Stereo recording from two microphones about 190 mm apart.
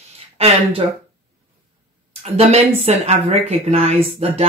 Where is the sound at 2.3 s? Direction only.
35° right (ahead or behind).